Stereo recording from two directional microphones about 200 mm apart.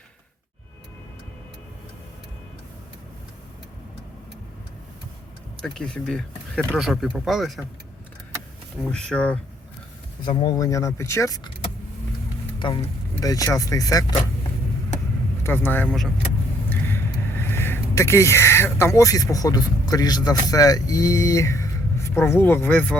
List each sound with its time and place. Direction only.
5.6 s speech: 5° left (ahead or behind)
8.9 s speech: 5° left (ahead or behind)
10.2 s a man's voice: 25° left (ahead or behind)
12.5 s speech: 25° left (ahead or behind)
15.4 s a man's voice: 10° left (ahead or behind)
16.6 s vehicle: 10° left (ahead or behind)
18.9 s a man's voice: 15° left (ahead or behind)